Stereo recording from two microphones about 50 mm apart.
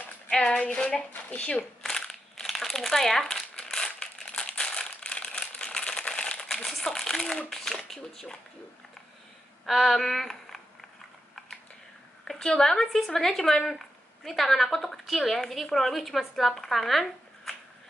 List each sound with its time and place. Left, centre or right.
0.8 s speech: left
1.8 s crumpling: centre
7.4 s speech: centre
9.7 s speech: centre
12.3 s a woman's voice: centre